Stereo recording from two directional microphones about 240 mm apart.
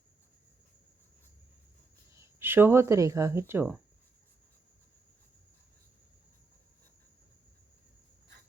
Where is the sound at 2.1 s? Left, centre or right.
Centre.